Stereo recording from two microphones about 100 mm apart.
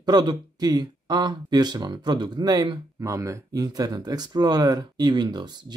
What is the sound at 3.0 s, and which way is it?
Speech, 30° right (ahead or behind).